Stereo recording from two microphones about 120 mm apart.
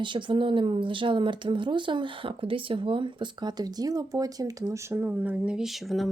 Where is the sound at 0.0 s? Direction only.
40° right (ahead or behind).